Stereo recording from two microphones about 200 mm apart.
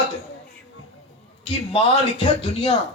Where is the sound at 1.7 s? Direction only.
30° left (ahead or behind).